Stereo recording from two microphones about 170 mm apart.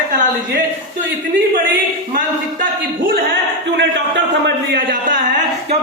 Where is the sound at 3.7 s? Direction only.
90° right.